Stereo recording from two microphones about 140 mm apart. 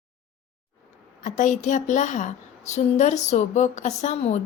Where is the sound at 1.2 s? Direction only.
65° left (ahead or behind).